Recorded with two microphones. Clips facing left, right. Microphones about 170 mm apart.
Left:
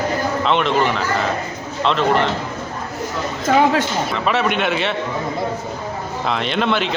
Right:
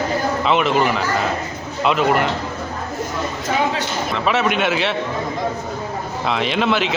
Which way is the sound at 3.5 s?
60° left (ahead or behind).